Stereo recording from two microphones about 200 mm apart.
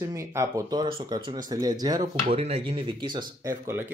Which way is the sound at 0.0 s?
15° right (ahead or behind).